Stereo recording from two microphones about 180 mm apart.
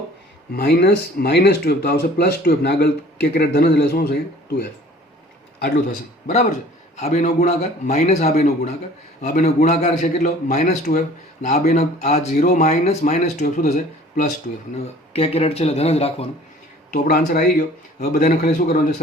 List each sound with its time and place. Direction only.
0.5 s speech: 60° left (ahead or behind)
6.2 s speech: 40° left (ahead or behind)
15.1 s speech: 35° left (ahead or behind)
16.9 s a man's voice: 55° left (ahead or behind)